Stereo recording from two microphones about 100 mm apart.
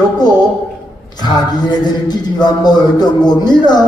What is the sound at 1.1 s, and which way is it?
Speech, 45° left (ahead or behind).